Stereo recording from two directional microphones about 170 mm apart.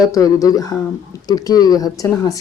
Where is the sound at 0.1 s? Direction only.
20° left (ahead or behind).